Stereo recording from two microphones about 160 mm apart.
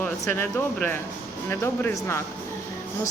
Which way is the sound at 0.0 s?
10° left (ahead or behind).